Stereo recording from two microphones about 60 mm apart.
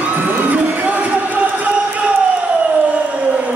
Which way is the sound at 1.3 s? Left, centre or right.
Right.